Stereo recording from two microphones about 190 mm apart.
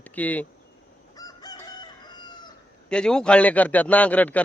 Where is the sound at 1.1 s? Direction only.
20° left (ahead or behind).